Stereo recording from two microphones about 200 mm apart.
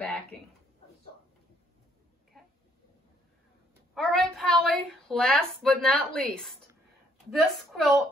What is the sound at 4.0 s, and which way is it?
Speech, centre (ahead or behind).